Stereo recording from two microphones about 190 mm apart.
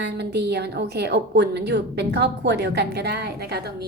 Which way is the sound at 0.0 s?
60° right (ahead or behind).